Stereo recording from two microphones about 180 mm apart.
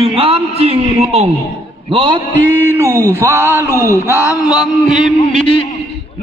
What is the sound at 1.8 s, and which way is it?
Speech, 30° right (ahead or behind).